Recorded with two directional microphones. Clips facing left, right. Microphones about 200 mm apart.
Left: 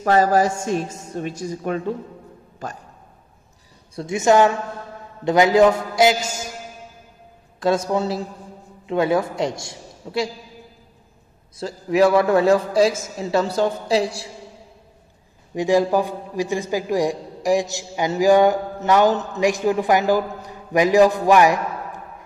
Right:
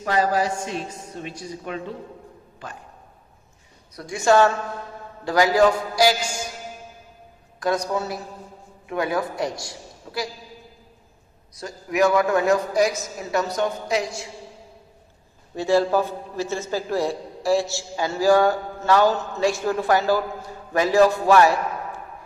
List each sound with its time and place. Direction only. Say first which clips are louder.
0.0 s a woman's voice: left 5 dB; 45° left (ahead or behind)
3.9 s a man's voice: left 2 dB; 25° left (ahead or behind)
7.6 s a man's voice: left 4 dB; 25° left (ahead or behind)
11.5 s a man's voice: left 5 dB; 30° left (ahead or behind)
15.5 s a man's voice: left 2 dB; 15° left (ahead or behind)